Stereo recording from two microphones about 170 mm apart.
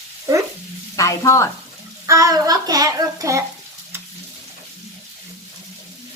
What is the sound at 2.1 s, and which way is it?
A child's voice, 20° right (ahead or behind).